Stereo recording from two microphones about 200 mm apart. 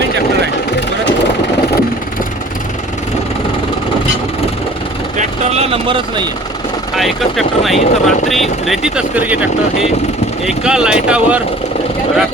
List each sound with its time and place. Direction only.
5.2 s speech: 30° right (ahead or behind)
6.9 s speech: centre (ahead or behind)